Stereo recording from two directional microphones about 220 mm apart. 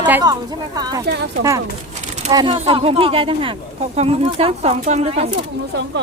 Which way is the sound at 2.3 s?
20° right (ahead or behind).